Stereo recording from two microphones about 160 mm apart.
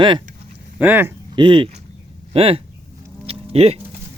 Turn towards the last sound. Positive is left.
turn(degrees=-35)  # may be behind; listen again after turning